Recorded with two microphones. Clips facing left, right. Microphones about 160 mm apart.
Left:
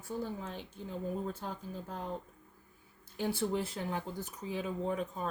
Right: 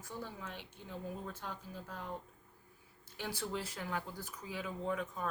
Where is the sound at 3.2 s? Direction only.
25° left (ahead or behind).